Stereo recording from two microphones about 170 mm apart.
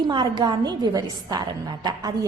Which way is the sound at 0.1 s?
30° right (ahead or behind).